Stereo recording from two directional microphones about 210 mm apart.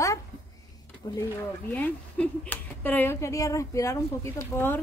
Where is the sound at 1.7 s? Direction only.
10° left (ahead or behind).